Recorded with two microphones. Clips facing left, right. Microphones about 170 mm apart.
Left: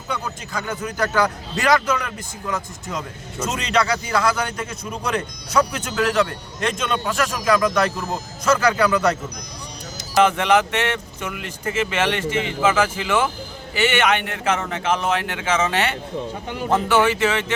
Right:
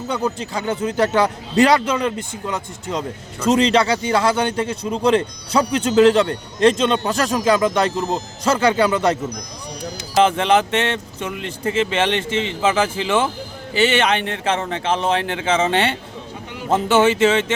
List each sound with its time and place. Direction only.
0.1 s a man's voice: 30° right (ahead or behind)
10.2 s a man's voice: 30° right (ahead or behind)